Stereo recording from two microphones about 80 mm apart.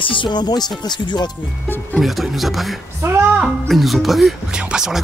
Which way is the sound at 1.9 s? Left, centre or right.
Centre.